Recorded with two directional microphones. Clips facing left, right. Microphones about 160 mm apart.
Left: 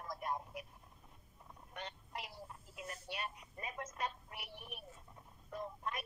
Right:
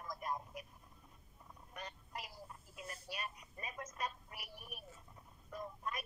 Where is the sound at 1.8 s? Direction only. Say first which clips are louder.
Left 1 dB; 30° left (ahead or behind).